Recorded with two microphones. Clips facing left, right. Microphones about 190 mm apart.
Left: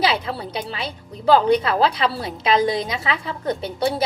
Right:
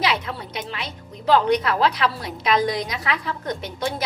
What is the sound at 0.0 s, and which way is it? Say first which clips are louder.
A woman's voice: left 3 dB; 30° left (ahead or behind).